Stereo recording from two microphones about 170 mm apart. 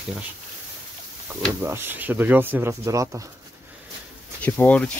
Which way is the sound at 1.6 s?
15° right (ahead or behind).